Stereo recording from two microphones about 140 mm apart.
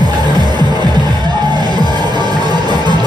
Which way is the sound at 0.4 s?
30° right (ahead or behind).